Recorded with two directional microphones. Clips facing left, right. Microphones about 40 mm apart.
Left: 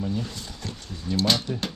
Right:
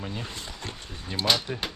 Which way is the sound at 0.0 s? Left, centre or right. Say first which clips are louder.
Left 5 dB; right.